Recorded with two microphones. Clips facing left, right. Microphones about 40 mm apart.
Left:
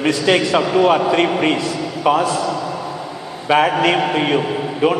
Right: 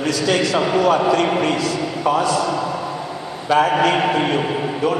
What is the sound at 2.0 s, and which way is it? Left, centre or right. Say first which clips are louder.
Speech: left 3 dB; left.